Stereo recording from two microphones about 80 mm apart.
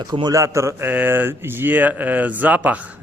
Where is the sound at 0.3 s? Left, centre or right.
Right.